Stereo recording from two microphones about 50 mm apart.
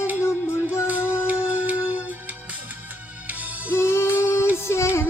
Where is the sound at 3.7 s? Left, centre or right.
Left.